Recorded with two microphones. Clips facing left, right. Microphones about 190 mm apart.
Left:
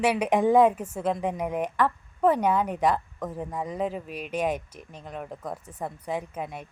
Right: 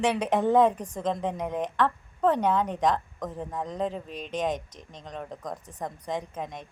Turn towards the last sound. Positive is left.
turn(degrees=10)  # may be behind; listen again after turning